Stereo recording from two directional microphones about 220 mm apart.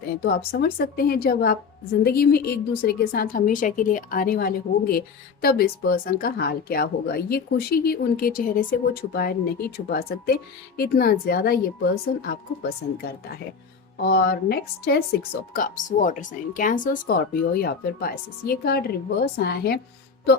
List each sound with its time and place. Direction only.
0.2 s a woman's voice: 45° left (ahead or behind)